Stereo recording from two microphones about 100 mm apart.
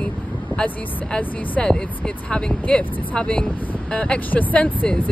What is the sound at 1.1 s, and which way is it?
Speech, 10° left (ahead or behind).